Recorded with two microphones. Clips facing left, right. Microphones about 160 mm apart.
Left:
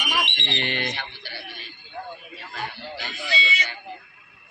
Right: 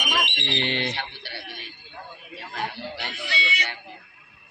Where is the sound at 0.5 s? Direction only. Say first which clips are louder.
Right 1 dB; 25° right (ahead or behind).